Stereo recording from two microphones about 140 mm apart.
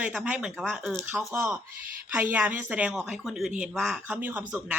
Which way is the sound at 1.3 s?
15° right (ahead or behind).